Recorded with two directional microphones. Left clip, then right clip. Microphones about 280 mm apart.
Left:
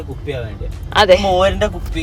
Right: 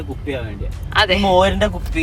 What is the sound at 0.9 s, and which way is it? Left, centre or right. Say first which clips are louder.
Speech: left 5 dB; left.